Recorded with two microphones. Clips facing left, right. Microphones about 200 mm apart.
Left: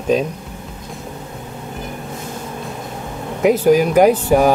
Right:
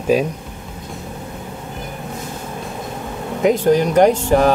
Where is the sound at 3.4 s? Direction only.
5° left (ahead or behind).